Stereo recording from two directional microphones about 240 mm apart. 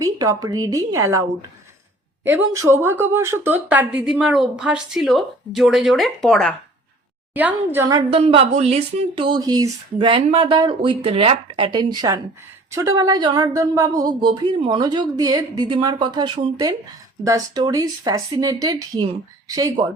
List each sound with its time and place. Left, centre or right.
0.0 s a woman's voice: centre